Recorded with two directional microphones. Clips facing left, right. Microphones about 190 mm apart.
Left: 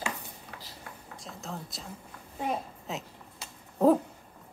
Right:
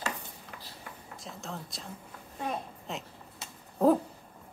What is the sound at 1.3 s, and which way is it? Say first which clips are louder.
Speech: left 1 dB; centre (ahead or behind).